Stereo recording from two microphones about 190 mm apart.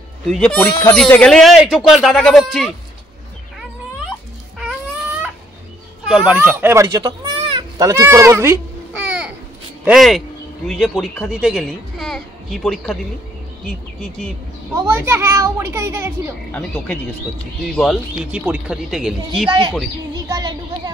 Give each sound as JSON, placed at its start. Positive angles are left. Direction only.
{"t": 0.3, "sound": "speech", "side_deg": 5}
{"t": 6.0, "sound": "speech", "side_deg": -5}
{"t": 9.8, "sound": "speech", "side_deg": 0}
{"t": 14.7, "sound": "speech", "side_deg": -15}
{"t": 16.5, "sound": "speech", "side_deg": 10}
{"t": 17.7, "sound": "speech", "side_deg": 0}
{"t": 20.2, "sound": "a sound", "side_deg": -20}